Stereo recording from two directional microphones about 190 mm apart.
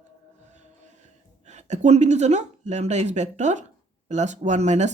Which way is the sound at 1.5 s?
35° right (ahead or behind).